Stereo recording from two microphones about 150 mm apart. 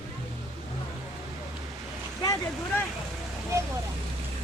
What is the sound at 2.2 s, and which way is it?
Vehicle, 25° left (ahead or behind).